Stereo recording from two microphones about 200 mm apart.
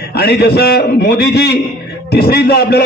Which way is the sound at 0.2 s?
55° left (ahead or behind).